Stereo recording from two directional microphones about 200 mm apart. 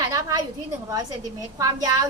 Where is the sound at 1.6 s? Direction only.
15° right (ahead or behind).